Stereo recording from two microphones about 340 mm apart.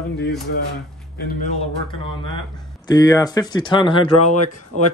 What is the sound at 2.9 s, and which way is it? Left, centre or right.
Speech, centre.